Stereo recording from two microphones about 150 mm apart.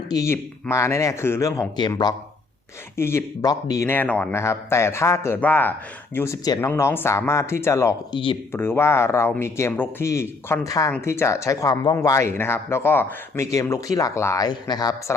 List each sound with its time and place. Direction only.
0.1 s speech: 20° left (ahead or behind)
3.0 s speech: 15° left (ahead or behind)
8.1 s speech: 35° left (ahead or behind)
8.5 s speech: 15° left (ahead or behind)